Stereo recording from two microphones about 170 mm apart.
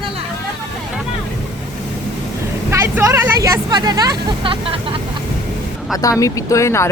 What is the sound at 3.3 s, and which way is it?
Speech, 20° right (ahead or behind).